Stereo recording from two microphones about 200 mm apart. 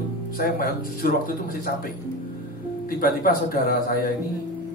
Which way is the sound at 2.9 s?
45° left (ahead or behind).